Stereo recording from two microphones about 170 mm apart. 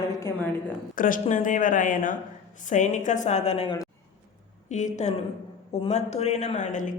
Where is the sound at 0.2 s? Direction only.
15° left (ahead or behind).